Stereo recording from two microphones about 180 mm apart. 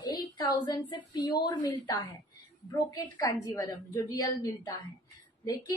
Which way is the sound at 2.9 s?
20° left (ahead or behind).